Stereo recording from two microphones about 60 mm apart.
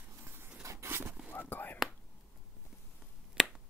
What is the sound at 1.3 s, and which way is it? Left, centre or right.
Whispering, left.